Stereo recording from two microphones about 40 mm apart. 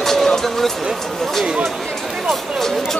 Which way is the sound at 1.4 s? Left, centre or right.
Centre.